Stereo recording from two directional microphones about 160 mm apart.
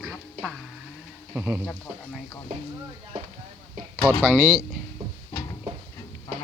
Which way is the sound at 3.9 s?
15° left (ahead or behind).